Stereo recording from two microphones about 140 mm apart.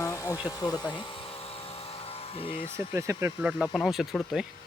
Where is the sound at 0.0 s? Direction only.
20° left (ahead or behind).